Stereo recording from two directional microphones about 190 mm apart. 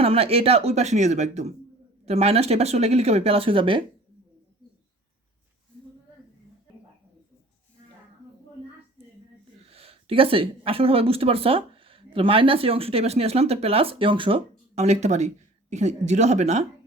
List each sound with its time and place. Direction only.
0.0 s speech: 30° right (ahead or behind)
9.6 s speech: 30° right (ahead or behind)